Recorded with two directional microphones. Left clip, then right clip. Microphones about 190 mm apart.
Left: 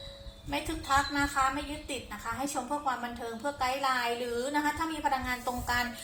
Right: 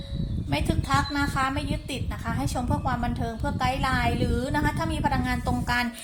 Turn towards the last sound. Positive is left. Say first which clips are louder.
# right 4 dB
turn(degrees=-55)  # may be behind; listen again after turning